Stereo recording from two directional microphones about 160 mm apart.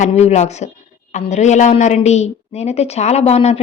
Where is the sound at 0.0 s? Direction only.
45° left (ahead or behind).